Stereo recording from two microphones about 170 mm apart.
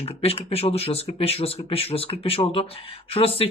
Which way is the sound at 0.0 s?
35° left (ahead or behind).